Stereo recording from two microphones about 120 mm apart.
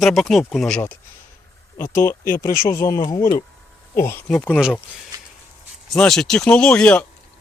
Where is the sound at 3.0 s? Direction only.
35° left (ahead or behind).